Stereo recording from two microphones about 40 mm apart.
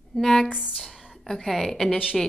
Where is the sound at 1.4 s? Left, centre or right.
Centre.